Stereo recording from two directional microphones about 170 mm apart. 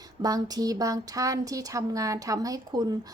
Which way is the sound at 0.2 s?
20° right (ahead or behind).